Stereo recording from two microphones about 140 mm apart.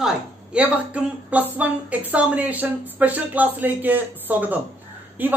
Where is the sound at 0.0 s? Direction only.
10° right (ahead or behind).